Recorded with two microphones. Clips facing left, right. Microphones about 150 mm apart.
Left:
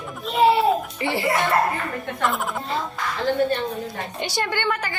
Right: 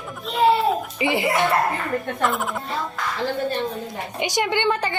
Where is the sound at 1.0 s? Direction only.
20° right (ahead or behind).